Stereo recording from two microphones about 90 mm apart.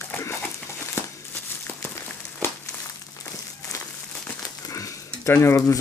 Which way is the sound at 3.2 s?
35° left (ahead or behind).